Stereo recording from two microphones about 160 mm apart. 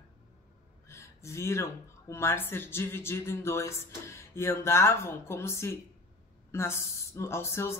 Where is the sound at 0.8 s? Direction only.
20° left (ahead or behind).